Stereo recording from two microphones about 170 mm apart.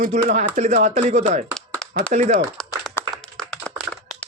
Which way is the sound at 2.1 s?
45° right (ahead or behind).